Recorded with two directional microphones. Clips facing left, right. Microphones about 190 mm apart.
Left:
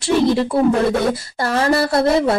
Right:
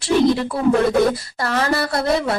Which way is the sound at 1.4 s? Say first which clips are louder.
Left 4 dB; 30° left (ahead or behind).